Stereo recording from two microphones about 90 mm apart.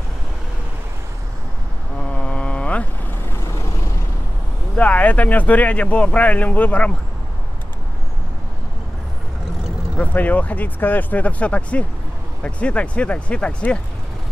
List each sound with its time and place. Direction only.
2.0 s mantra: 15° left (ahead or behind)
3.3 s vehicle: 30° left (ahead or behind)
4.7 s speech: 15° left (ahead or behind)
9.9 s speech: 15° left (ahead or behind)